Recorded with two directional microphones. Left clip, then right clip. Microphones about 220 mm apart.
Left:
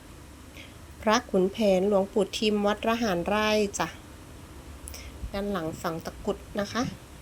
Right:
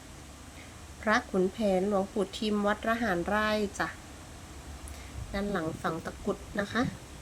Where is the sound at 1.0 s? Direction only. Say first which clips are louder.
Left 3 dB; 20° left (ahead or behind).